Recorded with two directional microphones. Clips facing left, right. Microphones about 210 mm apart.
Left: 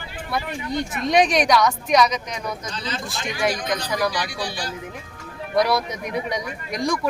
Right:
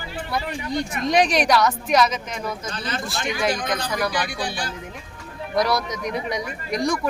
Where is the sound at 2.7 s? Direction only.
55° right (ahead or behind).